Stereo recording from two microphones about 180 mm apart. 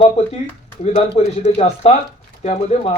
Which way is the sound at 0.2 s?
35° left (ahead or behind).